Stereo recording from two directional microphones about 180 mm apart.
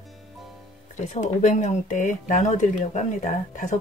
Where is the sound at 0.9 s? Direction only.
40° left (ahead or behind).